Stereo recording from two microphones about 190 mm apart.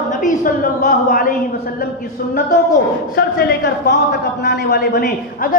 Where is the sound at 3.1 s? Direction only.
65° left (ahead or behind).